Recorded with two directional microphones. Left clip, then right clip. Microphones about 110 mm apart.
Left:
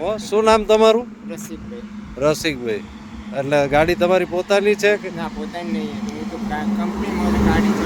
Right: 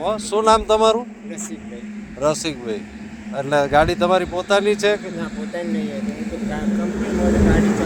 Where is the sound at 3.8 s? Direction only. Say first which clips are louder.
Right 1 dB; 90° left.